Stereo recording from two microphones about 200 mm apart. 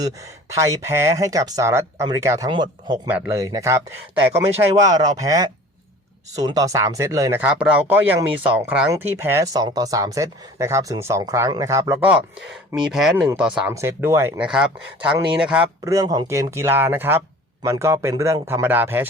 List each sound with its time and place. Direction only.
0.5 s speech: 15° right (ahead or behind)
3.1 s speech: 10° right (ahead or behind)
15.8 s speech: 15° right (ahead or behind)